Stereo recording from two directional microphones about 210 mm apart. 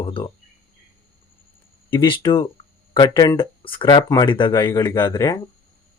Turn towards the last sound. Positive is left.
turn(degrees=15)  # may be behind; listen again after turning